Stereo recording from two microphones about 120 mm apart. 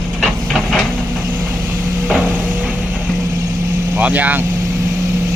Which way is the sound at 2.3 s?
20° right (ahead or behind).